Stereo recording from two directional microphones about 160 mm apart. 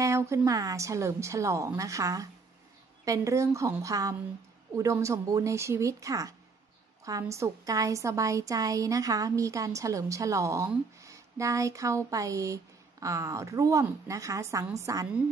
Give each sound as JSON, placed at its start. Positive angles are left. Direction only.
{"t": 0.0, "sound": "a woman's voice", "side_deg": -20}